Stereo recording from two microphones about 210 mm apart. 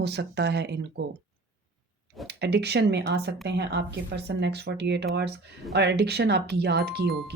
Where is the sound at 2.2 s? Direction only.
50° right (ahead or behind).